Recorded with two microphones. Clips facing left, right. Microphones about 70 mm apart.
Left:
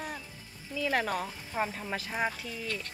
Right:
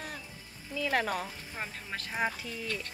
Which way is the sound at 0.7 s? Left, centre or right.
Centre.